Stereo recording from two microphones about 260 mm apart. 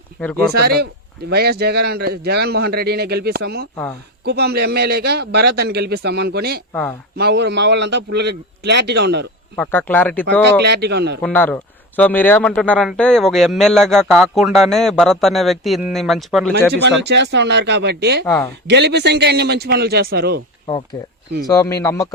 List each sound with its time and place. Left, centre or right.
0.5 s a man's voice: right
9.6 s speech: centre
10.6 s a man's voice: right
11.2 s speech: centre
16.8 s a man's voice: right
18.3 s speech: centre
18.7 s a man's voice: right
20.9 s speech: centre